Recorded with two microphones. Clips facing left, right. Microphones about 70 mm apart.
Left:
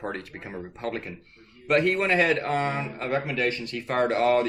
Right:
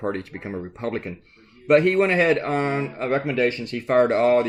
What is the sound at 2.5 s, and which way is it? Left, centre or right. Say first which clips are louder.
Speech: right 3 dB; centre.